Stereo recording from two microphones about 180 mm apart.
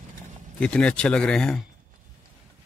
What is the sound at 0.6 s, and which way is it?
Speech, 5° left (ahead or behind).